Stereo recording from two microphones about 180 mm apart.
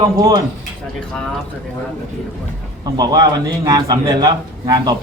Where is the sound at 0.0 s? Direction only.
25° right (ahead or behind).